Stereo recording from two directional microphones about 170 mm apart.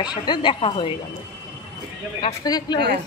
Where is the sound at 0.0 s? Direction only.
25° left (ahead or behind).